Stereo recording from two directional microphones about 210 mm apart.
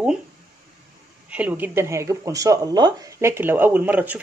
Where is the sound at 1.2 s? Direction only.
5° right (ahead or behind).